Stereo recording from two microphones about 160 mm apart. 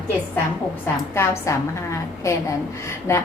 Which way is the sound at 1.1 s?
15° left (ahead or behind).